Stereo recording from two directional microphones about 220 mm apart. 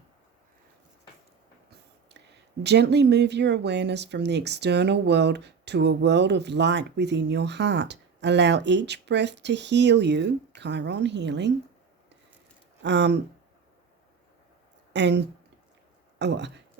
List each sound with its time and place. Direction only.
2.6 s speech: 50° right (ahead or behind)
12.8 s speech: 50° right (ahead or behind)
14.9 s speech: 50° right (ahead or behind)